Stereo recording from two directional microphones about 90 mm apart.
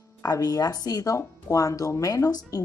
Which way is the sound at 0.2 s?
40° left (ahead or behind).